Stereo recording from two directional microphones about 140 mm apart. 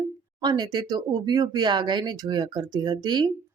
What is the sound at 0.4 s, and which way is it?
Speech, 30° right (ahead or behind).